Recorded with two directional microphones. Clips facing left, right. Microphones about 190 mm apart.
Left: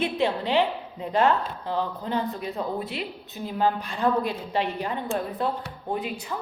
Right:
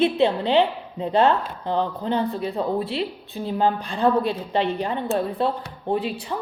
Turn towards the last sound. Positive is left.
turn(degrees=-30)  # may be behind; listen again after turning